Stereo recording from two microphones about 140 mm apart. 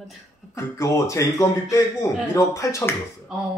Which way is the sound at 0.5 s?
20° left (ahead or behind).